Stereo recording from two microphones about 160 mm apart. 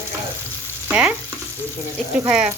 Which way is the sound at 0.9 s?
10° right (ahead or behind).